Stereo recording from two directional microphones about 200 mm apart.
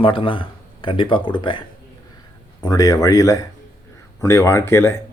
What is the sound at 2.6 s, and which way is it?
Speech, 20° left (ahead or behind).